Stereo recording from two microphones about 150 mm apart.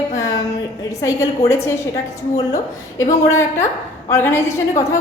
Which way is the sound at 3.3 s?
15° left (ahead or behind).